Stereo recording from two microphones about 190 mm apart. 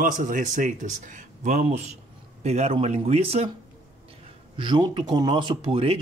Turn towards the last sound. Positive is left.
turn(degrees=-30)  # may be behind; listen again after turning